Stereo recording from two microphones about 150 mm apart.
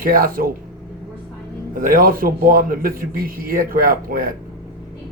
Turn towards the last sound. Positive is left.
turn(degrees=-70)  # may be behind; listen again after turning